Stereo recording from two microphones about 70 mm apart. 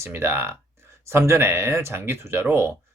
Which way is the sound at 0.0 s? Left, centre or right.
Right.